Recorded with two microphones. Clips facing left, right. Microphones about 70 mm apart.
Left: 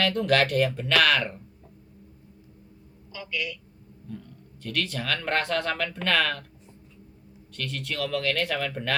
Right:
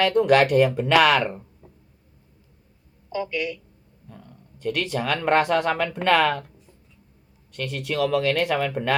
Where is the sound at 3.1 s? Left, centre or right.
Right.